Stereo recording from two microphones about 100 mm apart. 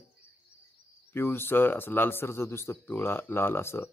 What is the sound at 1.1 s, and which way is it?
Speech, 20° left (ahead or behind).